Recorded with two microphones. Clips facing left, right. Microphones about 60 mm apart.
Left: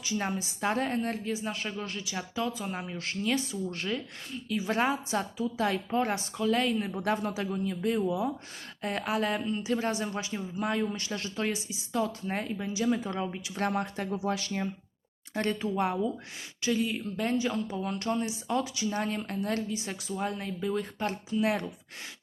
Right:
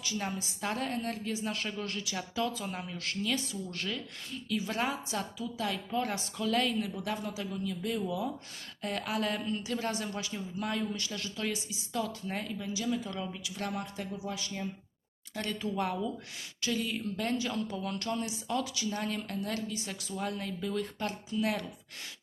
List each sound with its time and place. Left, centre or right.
0.0 s a woman's voice: left
6.3 s a woman's voice: centre
7.0 s a woman's voice: left
13.6 s speech: left
15.6 s a woman's voice: left